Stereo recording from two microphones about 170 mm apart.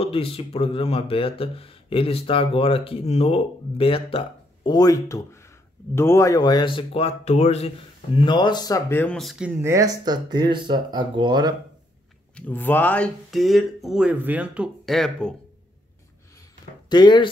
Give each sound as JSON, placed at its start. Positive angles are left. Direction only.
{"t": 0.0, "sound": "speech", "side_deg": 35}
{"t": 9.6, "sound": "speech", "side_deg": -20}
{"t": 12.4, "sound": "speech", "side_deg": 10}
{"t": 16.9, "sound": "speech", "side_deg": 25}